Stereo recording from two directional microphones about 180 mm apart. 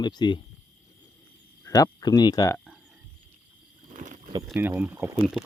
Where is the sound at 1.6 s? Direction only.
20° left (ahead or behind).